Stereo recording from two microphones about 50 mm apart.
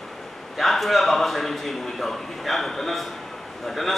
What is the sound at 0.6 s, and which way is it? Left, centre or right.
A man's voice, centre.